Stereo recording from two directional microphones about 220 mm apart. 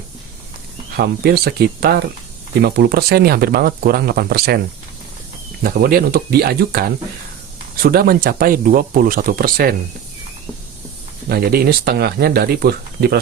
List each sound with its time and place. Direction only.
0.9 s speech: 45° right (ahead or behind)
5.6 s speech: 40° right (ahead or behind)
11.3 s speech: 45° right (ahead or behind)